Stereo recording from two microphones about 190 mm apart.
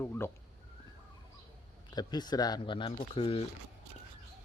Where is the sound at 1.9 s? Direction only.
20° left (ahead or behind).